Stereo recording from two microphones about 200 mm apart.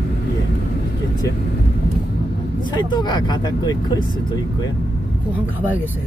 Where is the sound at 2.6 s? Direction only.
25° left (ahead or behind).